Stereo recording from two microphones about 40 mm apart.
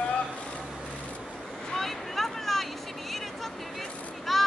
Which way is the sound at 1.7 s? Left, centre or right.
Centre.